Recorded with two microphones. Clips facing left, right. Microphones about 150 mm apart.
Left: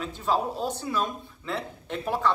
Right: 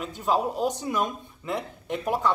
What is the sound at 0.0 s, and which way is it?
Speech, 10° right (ahead or behind).